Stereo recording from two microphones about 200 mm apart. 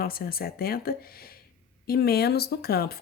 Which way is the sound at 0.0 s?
50° left (ahead or behind).